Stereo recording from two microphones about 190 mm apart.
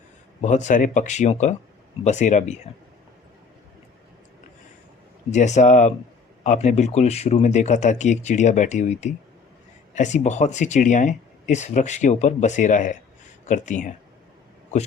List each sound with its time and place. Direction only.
0.4 s speech: 40° left (ahead or behind)
5.3 s speech: 40° left (ahead or behind)